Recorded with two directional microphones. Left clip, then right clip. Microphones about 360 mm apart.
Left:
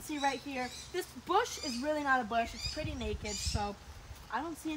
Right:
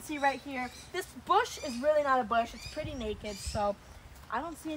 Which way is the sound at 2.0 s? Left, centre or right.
Right.